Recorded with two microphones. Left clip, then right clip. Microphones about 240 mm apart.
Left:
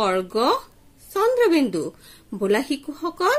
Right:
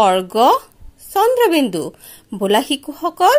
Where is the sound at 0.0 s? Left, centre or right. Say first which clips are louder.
Right 8 dB; right.